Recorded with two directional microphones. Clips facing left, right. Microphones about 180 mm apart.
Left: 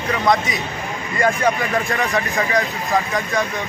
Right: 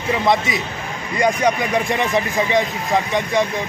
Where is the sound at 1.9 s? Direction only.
25° right (ahead or behind).